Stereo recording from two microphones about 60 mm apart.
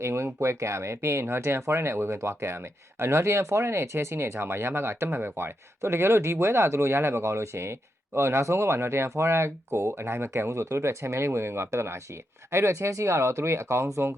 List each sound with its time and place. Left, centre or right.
0.0 s speech: right